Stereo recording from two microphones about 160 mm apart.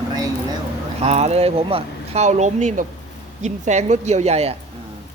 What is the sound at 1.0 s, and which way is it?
A woman's voice, 40° right (ahead or behind).